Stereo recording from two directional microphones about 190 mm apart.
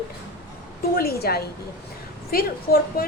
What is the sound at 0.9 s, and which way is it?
A woman's voice, 55° left (ahead or behind).